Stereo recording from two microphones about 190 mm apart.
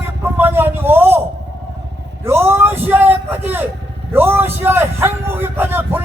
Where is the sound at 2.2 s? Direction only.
10° right (ahead or behind).